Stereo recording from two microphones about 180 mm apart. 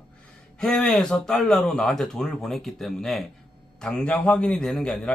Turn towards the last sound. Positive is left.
turn(degrees=5)  # may be behind; listen again after turning